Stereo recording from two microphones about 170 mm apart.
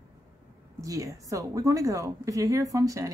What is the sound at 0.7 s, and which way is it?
A woman's voice, 20° right (ahead or behind).